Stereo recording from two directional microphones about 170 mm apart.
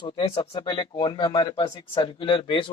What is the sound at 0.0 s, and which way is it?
Speech, 30° left (ahead or behind).